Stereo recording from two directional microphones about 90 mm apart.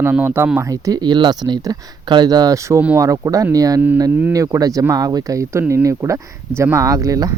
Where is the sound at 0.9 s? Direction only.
55° right (ahead or behind).